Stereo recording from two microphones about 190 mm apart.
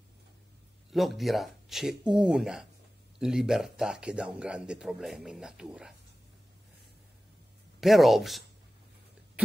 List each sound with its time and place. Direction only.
0.9 s speech: centre (ahead or behind)
7.8 s speech: centre (ahead or behind)